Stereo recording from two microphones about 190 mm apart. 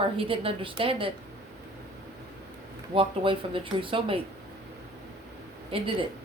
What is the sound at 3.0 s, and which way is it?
A woman's voice, 30° right (ahead or behind).